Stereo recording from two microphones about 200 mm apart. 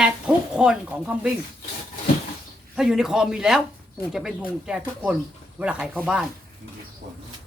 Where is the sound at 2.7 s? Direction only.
Centre (ahead or behind).